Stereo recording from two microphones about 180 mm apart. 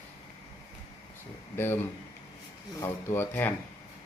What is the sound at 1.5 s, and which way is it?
Speech, 10° left (ahead or behind).